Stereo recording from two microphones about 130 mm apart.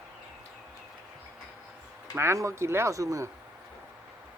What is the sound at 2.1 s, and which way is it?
Speech, 20° right (ahead or behind).